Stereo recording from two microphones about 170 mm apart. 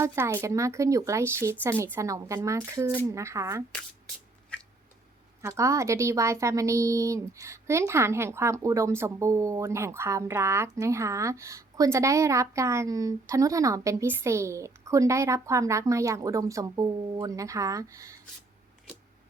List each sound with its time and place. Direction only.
0.0 s a woman's voice: 15° right (ahead or behind)
5.4 s a woman's voice: 15° right (ahead or behind)